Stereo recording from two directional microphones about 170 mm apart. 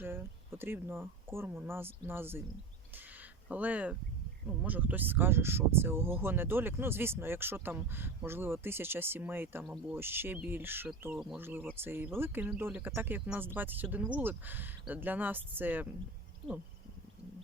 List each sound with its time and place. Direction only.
0.0 s speech: 15° right (ahead or behind)
2.9 s a sound: 10° right (ahead or behind)
4.6 s speech: 10° right (ahead or behind)